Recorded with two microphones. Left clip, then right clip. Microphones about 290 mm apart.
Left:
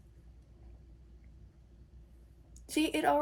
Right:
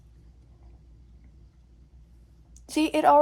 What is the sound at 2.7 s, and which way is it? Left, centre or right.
Speech, centre.